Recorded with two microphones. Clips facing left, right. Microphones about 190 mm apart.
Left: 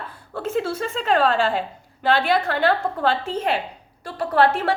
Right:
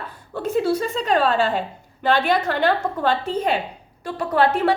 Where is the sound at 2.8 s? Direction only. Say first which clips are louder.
Right 1 dB; 40° right (ahead or behind).